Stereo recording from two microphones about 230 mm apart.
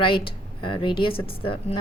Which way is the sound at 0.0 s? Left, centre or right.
Left.